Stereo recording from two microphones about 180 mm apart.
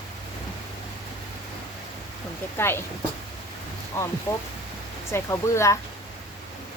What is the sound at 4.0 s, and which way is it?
A woman's voice, 15° left (ahead or behind).